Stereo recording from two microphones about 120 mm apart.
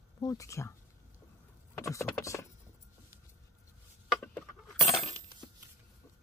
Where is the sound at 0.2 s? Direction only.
30° left (ahead or behind).